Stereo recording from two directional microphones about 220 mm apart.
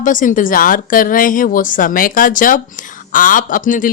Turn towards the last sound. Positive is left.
turn(degrees=35)  # may be behind; listen again after turning